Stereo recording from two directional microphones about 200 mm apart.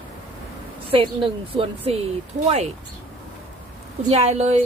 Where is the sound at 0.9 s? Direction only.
25° right (ahead or behind).